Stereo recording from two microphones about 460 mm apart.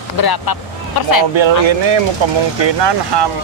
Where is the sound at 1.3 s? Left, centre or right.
Right.